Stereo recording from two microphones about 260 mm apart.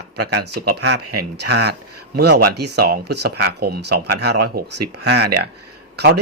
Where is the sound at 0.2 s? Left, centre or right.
Right.